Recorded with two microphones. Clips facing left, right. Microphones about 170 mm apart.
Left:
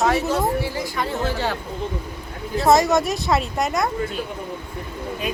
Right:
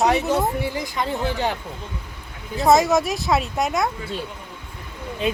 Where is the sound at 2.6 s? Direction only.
Centre (ahead or behind).